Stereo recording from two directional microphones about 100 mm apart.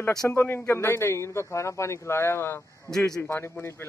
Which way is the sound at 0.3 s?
20° left (ahead or behind).